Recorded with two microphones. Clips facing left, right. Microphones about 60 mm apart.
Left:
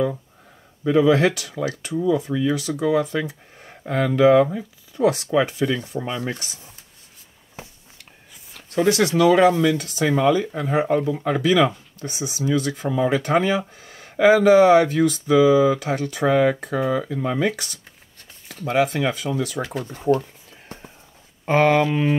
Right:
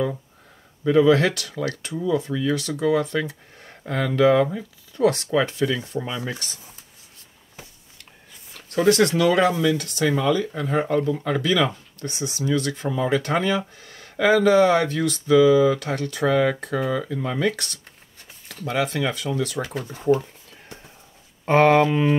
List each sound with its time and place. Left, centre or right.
0.8 s speech: centre
8.7 s speech: centre
20.7 s a sound: left
21.5 s speech: centre